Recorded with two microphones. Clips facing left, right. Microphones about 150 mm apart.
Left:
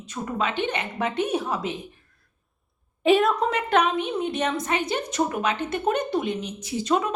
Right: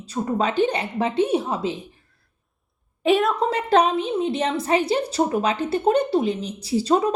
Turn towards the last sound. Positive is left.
turn(degrees=-35)  # may be behind; listen again after turning